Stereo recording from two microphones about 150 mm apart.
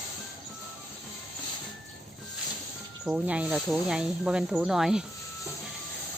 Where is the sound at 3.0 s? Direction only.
10° right (ahead or behind).